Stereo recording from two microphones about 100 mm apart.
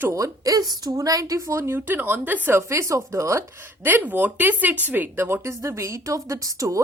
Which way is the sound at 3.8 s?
15° right (ahead or behind).